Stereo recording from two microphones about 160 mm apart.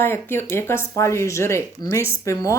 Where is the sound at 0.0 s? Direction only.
15° left (ahead or behind).